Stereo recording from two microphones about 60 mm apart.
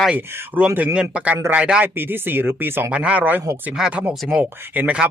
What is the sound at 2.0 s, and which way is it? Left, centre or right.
Speech, right.